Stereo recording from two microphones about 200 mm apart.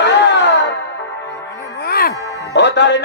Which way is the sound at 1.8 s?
50° left (ahead or behind).